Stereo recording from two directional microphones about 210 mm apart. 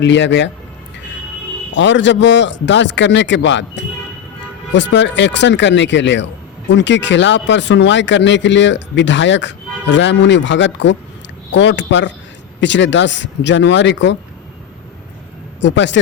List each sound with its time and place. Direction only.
0.0 s speech: 60° left (ahead or behind)
1.7 s speech: 60° left (ahead or behind)
15.6 s speech: 55° left (ahead or behind)